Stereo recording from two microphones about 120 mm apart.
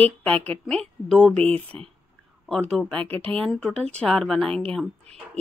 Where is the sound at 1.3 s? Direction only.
55° right (ahead or behind).